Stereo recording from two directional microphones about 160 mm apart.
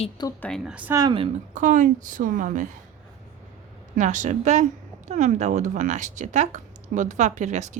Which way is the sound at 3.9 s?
50° right (ahead or behind).